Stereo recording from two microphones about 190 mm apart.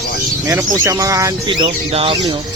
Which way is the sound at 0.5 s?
15° right (ahead or behind).